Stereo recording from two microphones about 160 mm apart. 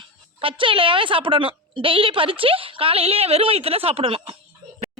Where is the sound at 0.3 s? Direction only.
35° right (ahead or behind).